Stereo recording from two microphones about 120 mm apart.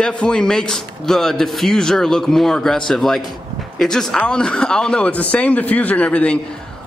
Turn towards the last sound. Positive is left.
turn(degrees=10)  # may be behind; listen again after turning